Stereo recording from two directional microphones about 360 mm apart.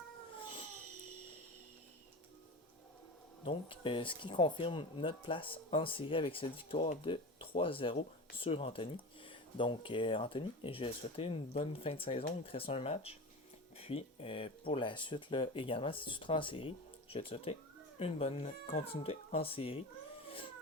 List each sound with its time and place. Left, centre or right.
3.4 s speech: centre